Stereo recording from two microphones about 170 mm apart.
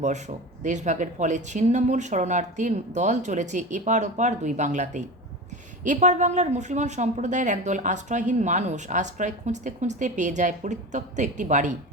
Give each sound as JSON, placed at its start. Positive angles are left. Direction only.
{"t": 0.0, "sound": "a woman's voice", "side_deg": -45}